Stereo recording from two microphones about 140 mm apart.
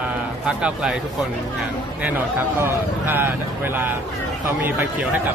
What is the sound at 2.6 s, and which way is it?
Speech, 15° right (ahead or behind).